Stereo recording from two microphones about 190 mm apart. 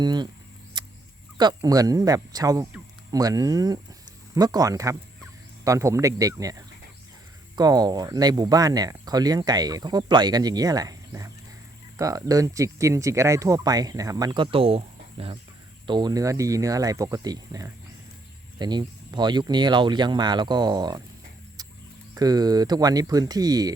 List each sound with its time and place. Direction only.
0.0 s speech: 20° right (ahead or behind)
0.8 s a sound: 25° right (ahead or behind)
1.4 s speech: 20° right (ahead or behind)
22.1 s speech: 20° right (ahead or behind)